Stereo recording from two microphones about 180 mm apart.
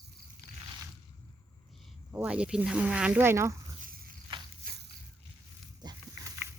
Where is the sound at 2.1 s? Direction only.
5° right (ahead or behind).